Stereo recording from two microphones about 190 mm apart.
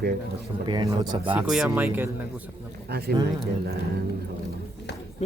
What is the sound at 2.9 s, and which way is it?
Speech, 55° right (ahead or behind).